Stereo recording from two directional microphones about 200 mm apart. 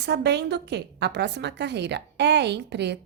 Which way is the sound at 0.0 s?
55° right (ahead or behind).